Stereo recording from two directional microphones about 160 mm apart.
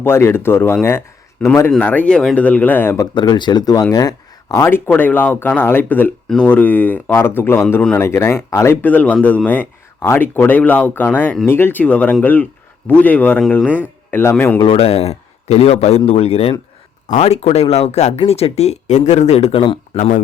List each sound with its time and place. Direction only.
0.0 s speech: 15° left (ahead or behind)
3.2 s speech: 30° left (ahead or behind)
14.6 s a man's voice: 35° left (ahead or behind)